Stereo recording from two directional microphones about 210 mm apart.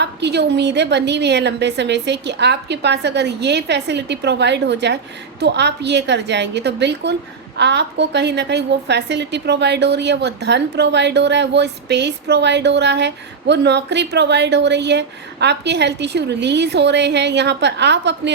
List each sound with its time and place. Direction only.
0.0 s a woman's voice: 55° right (ahead or behind)